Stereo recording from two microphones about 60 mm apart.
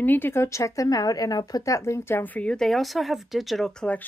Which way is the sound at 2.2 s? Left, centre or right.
Left.